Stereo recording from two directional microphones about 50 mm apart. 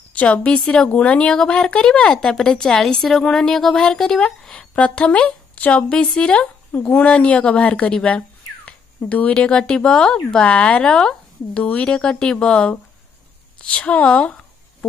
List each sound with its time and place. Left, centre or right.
0.1 s a woman's voice: left; by 4.6 s centre
4.7 s speech: left
7.1 s speech: left
11.5 s a woman's voice: left